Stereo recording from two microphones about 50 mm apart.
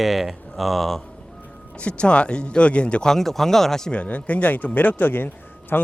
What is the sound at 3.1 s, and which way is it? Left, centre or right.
Speech, centre.